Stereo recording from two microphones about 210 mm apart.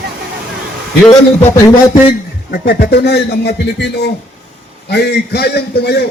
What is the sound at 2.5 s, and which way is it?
A man's voice, 50° left (ahead or behind).